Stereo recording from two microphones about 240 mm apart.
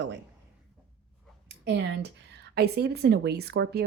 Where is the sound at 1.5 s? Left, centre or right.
Right.